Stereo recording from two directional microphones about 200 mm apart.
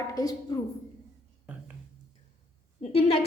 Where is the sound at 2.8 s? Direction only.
30° left (ahead or behind).